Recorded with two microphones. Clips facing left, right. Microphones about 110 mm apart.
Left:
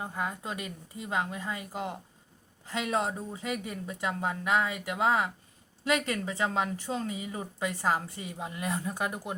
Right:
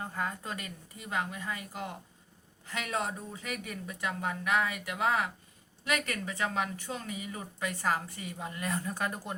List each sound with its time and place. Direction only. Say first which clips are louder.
0.0 s a woman's voice: left 2 dB; 15° left (ahead or behind)